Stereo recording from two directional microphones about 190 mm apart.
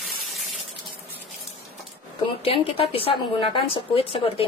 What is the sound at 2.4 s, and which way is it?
A woman's voice, 30° left (ahead or behind).